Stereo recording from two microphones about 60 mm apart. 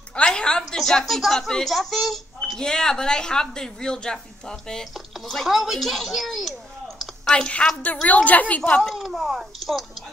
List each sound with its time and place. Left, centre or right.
0.1 s a woman's voice: centre
2.5 s speech: centre
7.2 s a woman's voice: centre
8.8 s speech: centre